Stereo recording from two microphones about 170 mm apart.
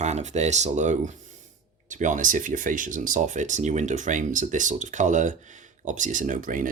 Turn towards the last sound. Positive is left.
turn(degrees=-50)  # may be behind; listen again after turning